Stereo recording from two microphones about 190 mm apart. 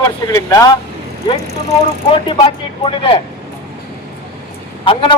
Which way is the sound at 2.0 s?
25° left (ahead or behind).